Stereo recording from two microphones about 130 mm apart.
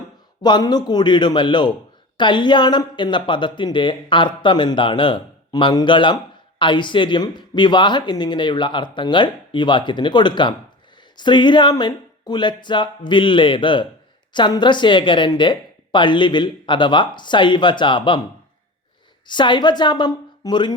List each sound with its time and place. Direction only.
0.4 s speech: 35° left (ahead or behind)
19.3 s speech: 35° left (ahead or behind)